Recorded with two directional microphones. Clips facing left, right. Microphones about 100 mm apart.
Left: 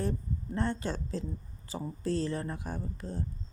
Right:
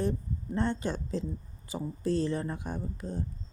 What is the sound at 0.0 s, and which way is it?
A woman's voice, 20° right (ahead or behind).